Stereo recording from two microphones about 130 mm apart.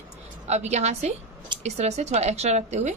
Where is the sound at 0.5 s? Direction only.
60° right (ahead or behind).